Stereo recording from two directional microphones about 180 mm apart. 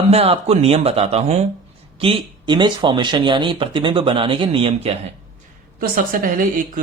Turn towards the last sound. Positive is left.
turn(degrees=-50)  # may be behind; listen again after turning